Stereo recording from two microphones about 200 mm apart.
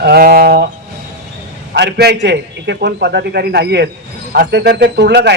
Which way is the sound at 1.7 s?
55° right (ahead or behind).